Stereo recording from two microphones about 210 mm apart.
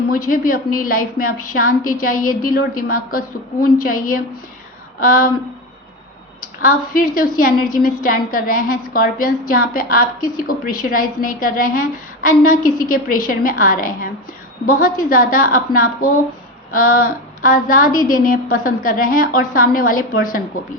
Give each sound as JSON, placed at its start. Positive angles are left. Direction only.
{"t": 0.1, "sound": "a woman's voice", "side_deg": 40}
{"t": 6.7, "sound": "a woman's voice", "side_deg": 45}